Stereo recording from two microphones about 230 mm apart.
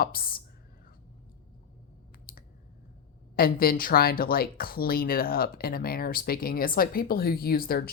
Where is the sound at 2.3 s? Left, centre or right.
Left.